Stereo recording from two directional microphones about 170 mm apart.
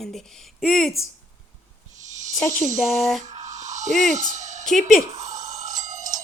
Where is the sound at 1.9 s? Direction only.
45° right (ahead or behind).